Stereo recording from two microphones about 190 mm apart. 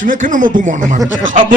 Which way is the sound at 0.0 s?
45° right (ahead or behind).